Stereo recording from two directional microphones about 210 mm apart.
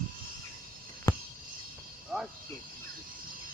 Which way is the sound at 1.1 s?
15° left (ahead or behind).